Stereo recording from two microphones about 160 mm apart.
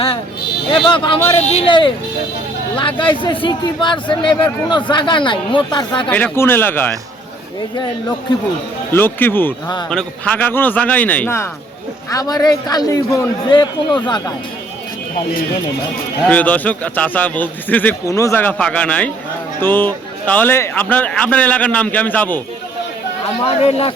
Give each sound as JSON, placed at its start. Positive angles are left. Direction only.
{"t": 0.7, "sound": "speech", "side_deg": 30}
{"t": 1.5, "sound": "speech", "side_deg": 40}
{"t": 2.7, "sound": "speech", "side_deg": 30}
{"t": 6.1, "sound": "a man's voice", "side_deg": 10}
{"t": 8.9, "sound": "a man's voice", "side_deg": 15}
{"t": 12.1, "sound": "a man's voice", "side_deg": 25}
{"t": 16.2, "sound": "a man's voice", "side_deg": 10}
{"t": 23.6, "sound": "speech", "side_deg": 40}